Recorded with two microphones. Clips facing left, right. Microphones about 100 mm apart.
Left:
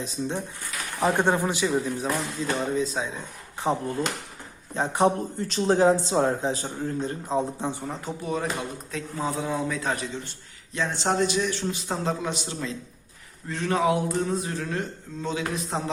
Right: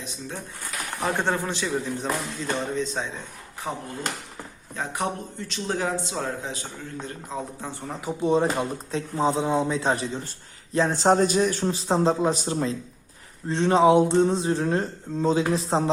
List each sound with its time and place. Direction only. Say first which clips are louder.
1.0 s a man's voice: left 3 dB; 15° left (ahead or behind)
3.6 s a man's voice: left 6 dB; 25° left (ahead or behind)
8.2 s a man's voice: right 8 dB; 30° right (ahead or behind)